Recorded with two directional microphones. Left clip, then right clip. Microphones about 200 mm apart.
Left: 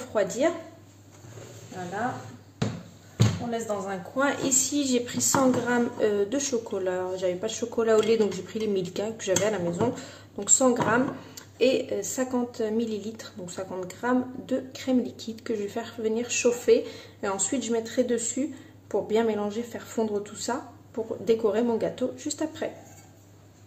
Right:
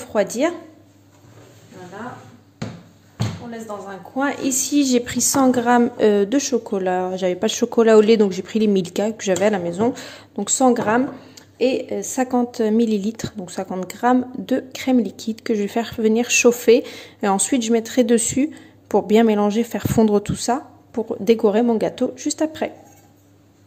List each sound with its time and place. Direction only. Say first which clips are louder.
0.0 s speech: right 6 dB; 40° right (ahead or behind)
4.2 s speech: right 4 dB; 35° right (ahead or behind)